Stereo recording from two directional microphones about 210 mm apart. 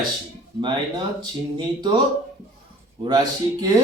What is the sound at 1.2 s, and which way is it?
Speech, 20° right (ahead or behind).